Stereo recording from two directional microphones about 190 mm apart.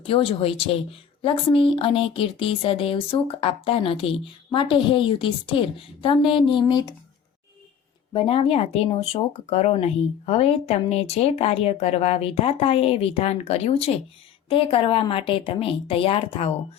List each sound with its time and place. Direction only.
0.0 s speech: 30° left (ahead or behind)
8.1 s speech: 30° left (ahead or behind)